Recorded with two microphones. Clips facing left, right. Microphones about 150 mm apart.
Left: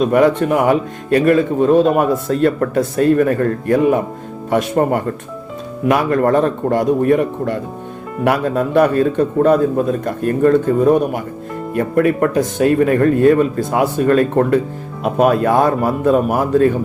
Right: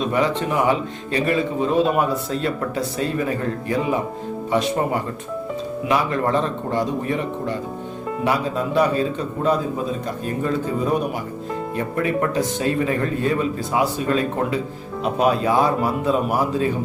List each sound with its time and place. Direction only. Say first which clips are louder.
0.0 s a man's voice: left 8 dB; 55° left (ahead or behind)